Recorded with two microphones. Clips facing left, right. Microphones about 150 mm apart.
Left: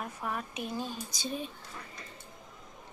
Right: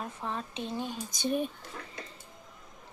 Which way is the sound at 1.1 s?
55° right (ahead or behind).